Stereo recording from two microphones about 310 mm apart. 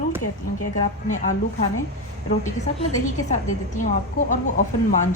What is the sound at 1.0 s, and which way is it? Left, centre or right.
Speech, left.